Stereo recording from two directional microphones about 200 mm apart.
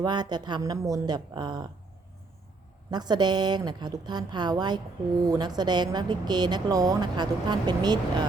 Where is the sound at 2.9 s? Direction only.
20° right (ahead or behind).